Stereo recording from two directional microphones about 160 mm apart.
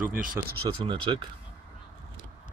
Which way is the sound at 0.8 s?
30° right (ahead or behind).